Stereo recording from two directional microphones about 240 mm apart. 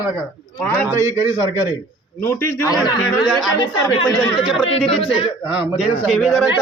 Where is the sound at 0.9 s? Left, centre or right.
Centre.